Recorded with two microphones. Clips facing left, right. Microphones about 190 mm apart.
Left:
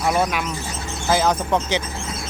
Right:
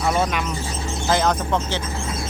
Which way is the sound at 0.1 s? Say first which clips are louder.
Left 1 dB; 5° left (ahead or behind).